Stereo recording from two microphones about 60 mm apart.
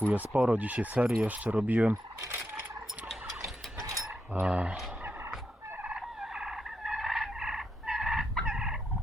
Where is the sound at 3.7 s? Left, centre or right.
Right.